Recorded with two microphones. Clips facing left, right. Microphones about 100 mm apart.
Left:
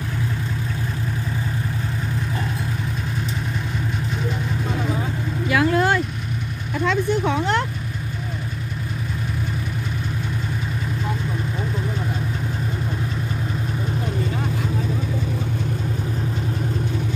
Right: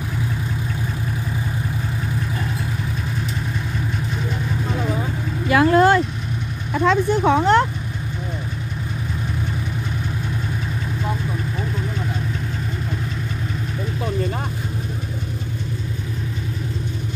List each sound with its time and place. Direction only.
5.5 s vehicle: 40° right (ahead or behind)
6.9 s speech: 40° right (ahead or behind)